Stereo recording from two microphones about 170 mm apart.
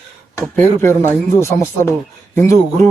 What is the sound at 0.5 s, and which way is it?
Speech, 15° left (ahead or behind).